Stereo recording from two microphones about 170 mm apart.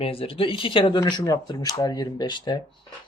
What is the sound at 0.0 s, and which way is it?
Speech, 35° left (ahead or behind).